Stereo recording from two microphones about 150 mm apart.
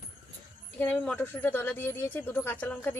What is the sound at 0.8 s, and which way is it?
Speech, 10° left (ahead or behind).